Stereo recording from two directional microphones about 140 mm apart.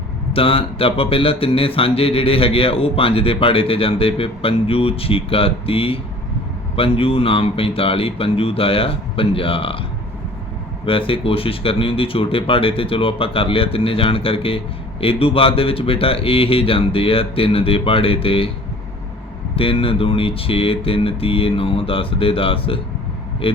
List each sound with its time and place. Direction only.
0.3 s speech: 40° left (ahead or behind)
10.8 s speech: 40° left (ahead or behind)
19.5 s speech: 40° left (ahead or behind)